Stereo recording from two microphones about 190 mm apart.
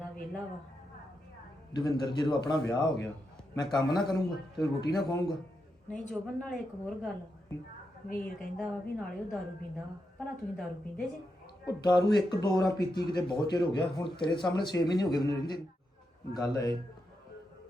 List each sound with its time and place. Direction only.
1.7 s speech: 25° left (ahead or behind)
5.9 s a woman's voice: 5° left (ahead or behind)
8.1 s a woman's voice: 5° left (ahead or behind)
11.8 s speech: 20° left (ahead or behind)